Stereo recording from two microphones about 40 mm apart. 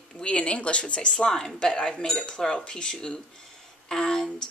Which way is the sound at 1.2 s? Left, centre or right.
Centre.